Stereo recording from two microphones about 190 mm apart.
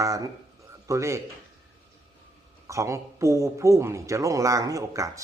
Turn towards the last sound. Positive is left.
turn(degrees=-15)  # may be behind; listen again after turning